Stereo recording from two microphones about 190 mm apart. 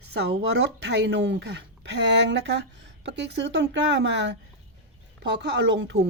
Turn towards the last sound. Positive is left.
turn(degrees=-60)  # may be behind; listen again after turning